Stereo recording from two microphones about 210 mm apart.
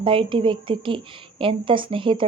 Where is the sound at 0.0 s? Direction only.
25° right (ahead or behind).